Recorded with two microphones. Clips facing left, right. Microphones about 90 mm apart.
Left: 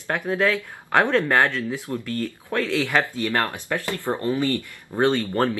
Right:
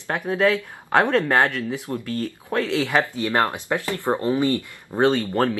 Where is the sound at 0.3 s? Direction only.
20° right (ahead or behind).